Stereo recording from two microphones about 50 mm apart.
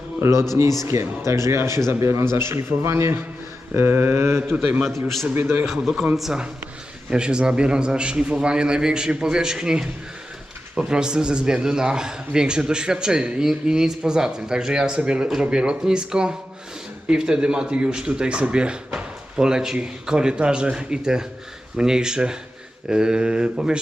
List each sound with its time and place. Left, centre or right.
0.2 s a man's voice: right
4.9 s a man's voice: centre
5.2 s a man's voice: right
5.6 s a man's voice: centre
7.1 s a man's voice: centre